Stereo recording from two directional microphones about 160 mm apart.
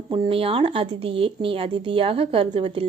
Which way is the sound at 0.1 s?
35° right (ahead or behind).